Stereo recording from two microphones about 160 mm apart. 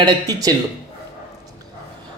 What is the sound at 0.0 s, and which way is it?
Speech, 25° right (ahead or behind).